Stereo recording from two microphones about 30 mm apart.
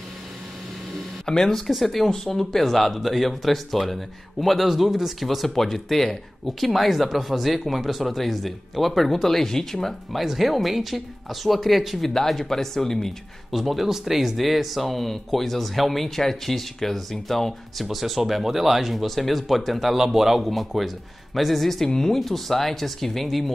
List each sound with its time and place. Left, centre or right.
1.2 s speech: left
1.8 s speech: centre
4.6 s speech: centre
10.1 s speech: centre
12.0 s speech: centre
13.5 s speech: centre
17.8 s speech: centre
22.2 s speech: centre